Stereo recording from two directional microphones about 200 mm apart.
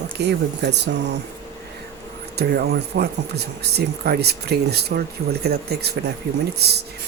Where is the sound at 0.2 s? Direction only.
55° right (ahead or behind).